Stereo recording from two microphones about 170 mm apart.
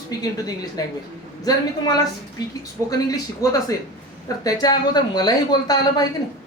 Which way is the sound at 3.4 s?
20° left (ahead or behind).